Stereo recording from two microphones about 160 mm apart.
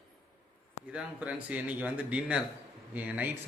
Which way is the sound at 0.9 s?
10° right (ahead or behind).